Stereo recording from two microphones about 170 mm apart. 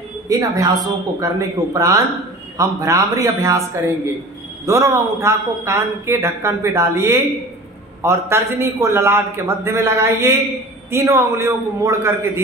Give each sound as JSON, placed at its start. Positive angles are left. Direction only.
{"t": 0.3, "sound": "a woman's voice", "side_deg": -20}